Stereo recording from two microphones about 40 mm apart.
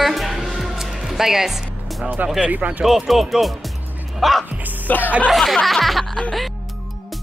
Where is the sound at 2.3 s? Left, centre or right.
Right.